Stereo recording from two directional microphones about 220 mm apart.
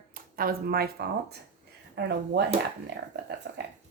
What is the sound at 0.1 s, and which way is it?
A woman's voice, 40° right (ahead or behind).